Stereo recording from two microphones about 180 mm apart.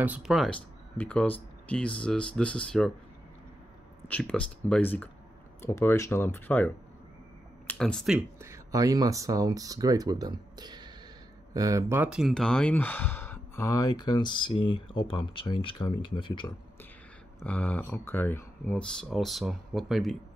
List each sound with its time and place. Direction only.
0.0 s speech: 5° right (ahead or behind)
4.1 s speech: 5° left (ahead or behind)
8.4 s speech: 15° right (ahead or behind); by 16.5 s 25° left (ahead or behind)
17.4 s speech: 5° left (ahead or behind)